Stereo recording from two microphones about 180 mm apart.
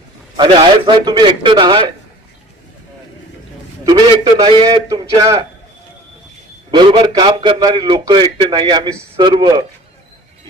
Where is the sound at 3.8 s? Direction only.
25° right (ahead or behind).